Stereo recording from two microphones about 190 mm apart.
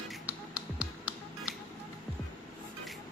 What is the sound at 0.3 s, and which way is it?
Music, 5° right (ahead or behind).